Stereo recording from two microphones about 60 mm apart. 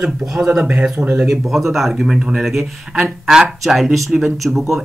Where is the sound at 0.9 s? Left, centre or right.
Right.